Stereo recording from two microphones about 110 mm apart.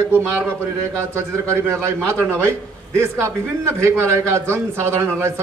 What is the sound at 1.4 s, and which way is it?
A man's voice, 25° right (ahead or behind).